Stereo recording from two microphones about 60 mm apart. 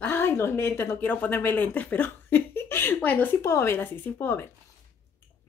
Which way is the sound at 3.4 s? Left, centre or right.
Left.